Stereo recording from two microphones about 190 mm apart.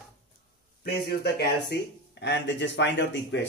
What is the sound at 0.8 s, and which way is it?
Speech, 60° left (ahead or behind).